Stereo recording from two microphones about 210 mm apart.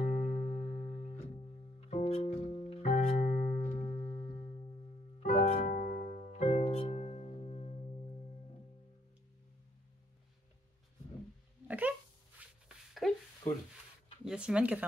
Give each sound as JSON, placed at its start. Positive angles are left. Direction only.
{"t": 0.0, "sound": "music", "side_deg": 35}
{"t": 11.6, "sound": "a sound", "side_deg": -5}
{"t": 14.2, "sound": "speech", "side_deg": -5}